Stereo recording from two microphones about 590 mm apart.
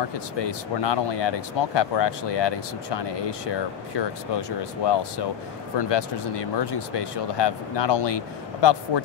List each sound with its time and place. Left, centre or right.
0.4 s speech: left